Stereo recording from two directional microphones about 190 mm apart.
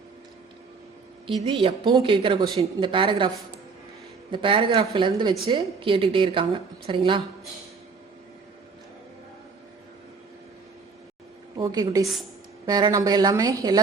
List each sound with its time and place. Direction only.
1.5 s a woman's voice: 25° right (ahead or behind)
4.3 s a woman's voice: 25° right (ahead or behind)
11.5 s a woman's voice: 20° right (ahead or behind)